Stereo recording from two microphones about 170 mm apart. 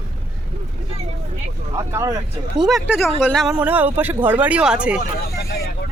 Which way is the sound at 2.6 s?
Centre (ahead or behind).